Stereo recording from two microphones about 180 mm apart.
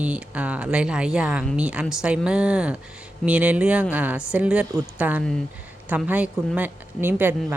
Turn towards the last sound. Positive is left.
turn(degrees=-10)  # may be behind; listen again after turning